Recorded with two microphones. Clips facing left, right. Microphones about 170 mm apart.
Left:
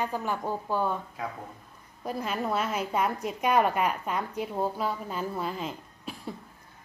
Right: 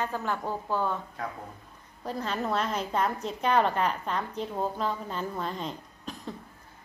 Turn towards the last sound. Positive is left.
turn(degrees=5)  # may be behind; listen again after turning